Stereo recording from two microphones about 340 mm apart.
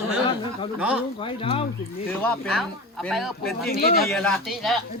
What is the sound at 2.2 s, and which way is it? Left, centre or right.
Speech, centre.